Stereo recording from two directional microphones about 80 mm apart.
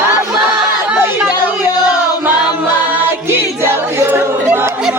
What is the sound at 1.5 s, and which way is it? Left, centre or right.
Music, left.